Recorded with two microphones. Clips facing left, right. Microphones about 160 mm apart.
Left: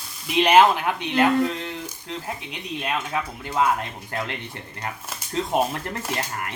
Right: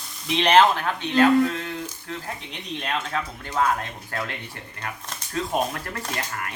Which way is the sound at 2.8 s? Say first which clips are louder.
Left 1 dB; 15° left (ahead or behind).